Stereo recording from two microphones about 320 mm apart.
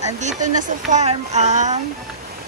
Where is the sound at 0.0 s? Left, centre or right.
Right.